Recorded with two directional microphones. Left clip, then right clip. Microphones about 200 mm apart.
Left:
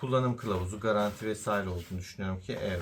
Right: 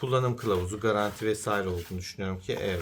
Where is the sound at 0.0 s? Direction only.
55° right (ahead or behind).